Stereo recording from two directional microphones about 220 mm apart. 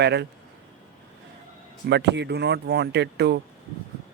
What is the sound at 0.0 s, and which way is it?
Speech, 50° right (ahead or behind).